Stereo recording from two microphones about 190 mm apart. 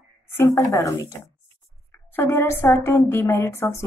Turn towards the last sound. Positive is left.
turn(degrees=15)  # may be behind; listen again after turning